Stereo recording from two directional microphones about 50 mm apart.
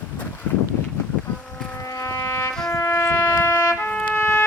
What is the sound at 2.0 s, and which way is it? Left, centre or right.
Music, left.